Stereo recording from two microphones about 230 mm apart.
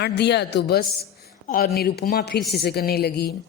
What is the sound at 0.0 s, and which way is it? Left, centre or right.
A woman's voice, left.